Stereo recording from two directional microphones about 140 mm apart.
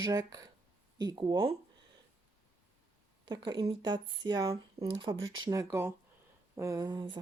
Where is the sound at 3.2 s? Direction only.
30° right (ahead or behind).